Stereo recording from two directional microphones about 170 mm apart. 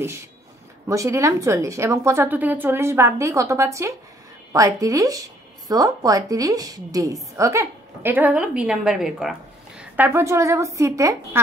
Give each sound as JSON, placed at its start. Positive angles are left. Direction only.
{"t": 0.0, "sound": "a woman's voice", "side_deg": -15}